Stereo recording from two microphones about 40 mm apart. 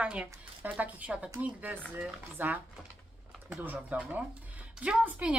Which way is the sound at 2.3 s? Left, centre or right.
Right.